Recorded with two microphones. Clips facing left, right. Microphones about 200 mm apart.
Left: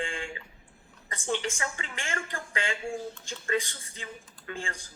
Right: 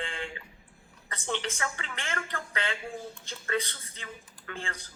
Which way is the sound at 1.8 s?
10° left (ahead or behind).